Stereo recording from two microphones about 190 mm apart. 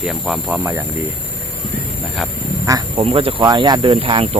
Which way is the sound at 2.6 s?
20° right (ahead or behind).